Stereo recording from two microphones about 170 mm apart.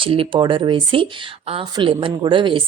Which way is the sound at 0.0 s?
30° right (ahead or behind).